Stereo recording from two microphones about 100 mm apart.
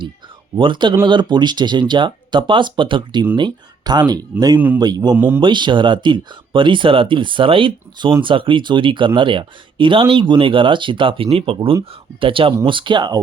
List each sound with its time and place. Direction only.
0.6 s speech: 55° right (ahead or behind)
5.1 s a man's voice: 20° right (ahead or behind)
5.4 s speech: 50° right (ahead or behind)